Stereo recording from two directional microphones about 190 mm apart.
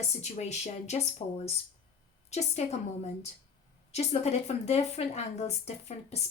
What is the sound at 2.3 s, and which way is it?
A woman's voice, 35° left (ahead or behind).